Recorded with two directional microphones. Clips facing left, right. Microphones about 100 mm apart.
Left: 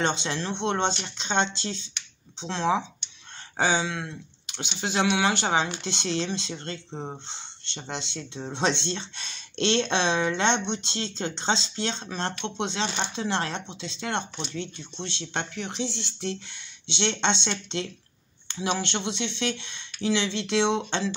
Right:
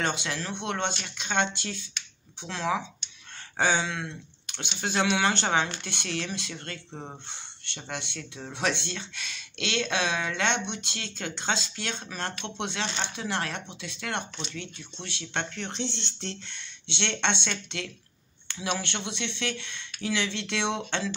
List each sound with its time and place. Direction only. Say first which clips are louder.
0.0 s speech: left 3 dB; 25° left (ahead or behind)